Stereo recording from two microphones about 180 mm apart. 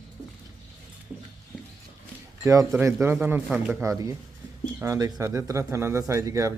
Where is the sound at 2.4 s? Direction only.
15° right (ahead or behind).